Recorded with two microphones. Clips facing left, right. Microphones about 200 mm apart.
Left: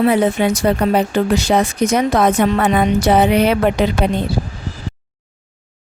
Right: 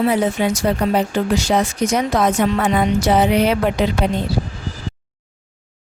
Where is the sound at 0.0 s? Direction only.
60° left (ahead or behind).